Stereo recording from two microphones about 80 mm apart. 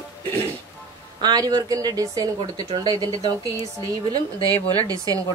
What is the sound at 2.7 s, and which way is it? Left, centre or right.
Speech, right.